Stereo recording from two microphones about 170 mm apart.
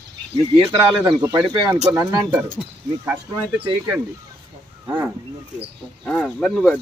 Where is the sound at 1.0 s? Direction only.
20° right (ahead or behind).